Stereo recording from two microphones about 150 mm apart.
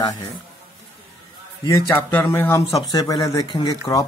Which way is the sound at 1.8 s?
15° left (ahead or behind).